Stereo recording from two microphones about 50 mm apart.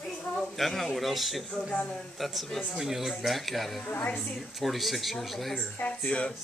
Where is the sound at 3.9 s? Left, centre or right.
Left.